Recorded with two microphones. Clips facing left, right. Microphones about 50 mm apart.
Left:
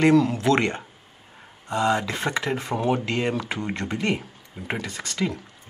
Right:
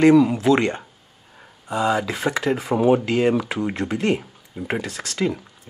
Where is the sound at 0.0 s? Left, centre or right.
Centre.